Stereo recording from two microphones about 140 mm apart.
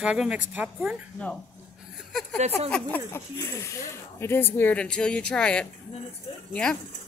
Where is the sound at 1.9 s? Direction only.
5° left (ahead or behind).